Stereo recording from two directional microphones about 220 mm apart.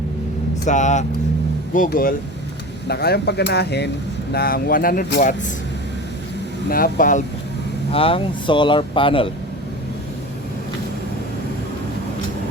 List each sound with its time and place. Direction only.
0.6 s speech: 35° left (ahead or behind)
6.7 s speech: 40° left (ahead or behind)
7.9 s speech: 25° left (ahead or behind)